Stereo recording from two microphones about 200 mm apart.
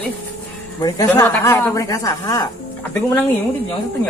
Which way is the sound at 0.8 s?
20° left (ahead or behind).